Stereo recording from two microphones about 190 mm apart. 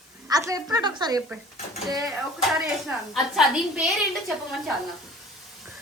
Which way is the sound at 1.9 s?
20° right (ahead or behind).